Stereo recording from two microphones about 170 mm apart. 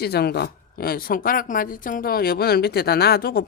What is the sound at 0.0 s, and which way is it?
Speech, 70° left (ahead or behind).